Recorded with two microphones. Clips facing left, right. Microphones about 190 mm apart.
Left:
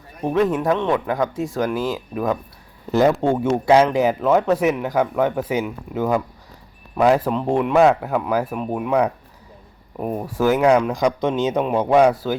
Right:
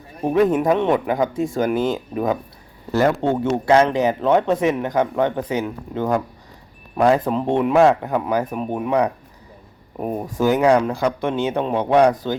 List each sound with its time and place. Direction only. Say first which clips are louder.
0.3 s speech: right 2 dB; 5° right (ahead or behind)
0.7 s speech: right 2 dB; 10° right (ahead or behind)
3.1 s speech: left 1 dB; 10° left (ahead or behind)
12.1 s speech: left 1 dB; 20° right (ahead or behind)